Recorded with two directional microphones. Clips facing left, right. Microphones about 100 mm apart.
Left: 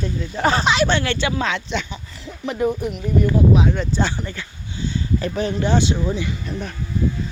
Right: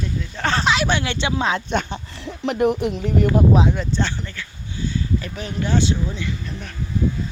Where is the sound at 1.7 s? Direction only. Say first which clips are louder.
Right 3 dB; 50° right (ahead or behind).